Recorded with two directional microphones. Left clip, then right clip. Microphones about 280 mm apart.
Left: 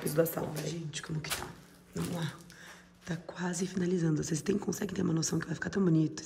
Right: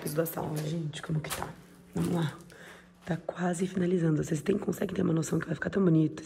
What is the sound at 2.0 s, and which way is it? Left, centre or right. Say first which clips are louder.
Speech: right 6 dB; centre.